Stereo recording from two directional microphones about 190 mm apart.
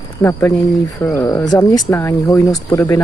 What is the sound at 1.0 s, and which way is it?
Speech, 15° left (ahead or behind).